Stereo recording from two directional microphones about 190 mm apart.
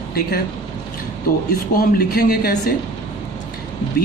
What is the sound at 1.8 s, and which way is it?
Speech, 55° left (ahead or behind).